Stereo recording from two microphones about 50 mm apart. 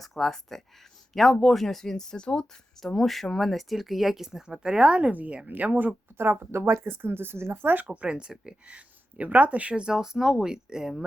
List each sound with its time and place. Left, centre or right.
0.0 s speech: centre
2.8 s speech: centre
5.1 s speech: right
6.5 s speech: right
6.9 s speech: right
7.9 s speech: right
9.8 s speech: centre